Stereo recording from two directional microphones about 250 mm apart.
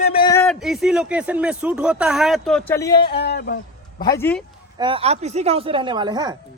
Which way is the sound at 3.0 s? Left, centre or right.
Left.